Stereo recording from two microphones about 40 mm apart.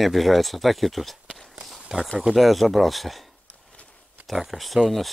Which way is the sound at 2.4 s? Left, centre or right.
Centre.